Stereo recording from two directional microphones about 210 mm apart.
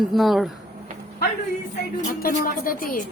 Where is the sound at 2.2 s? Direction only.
40° left (ahead or behind).